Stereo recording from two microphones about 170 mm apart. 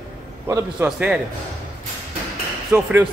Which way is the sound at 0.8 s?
5° right (ahead or behind).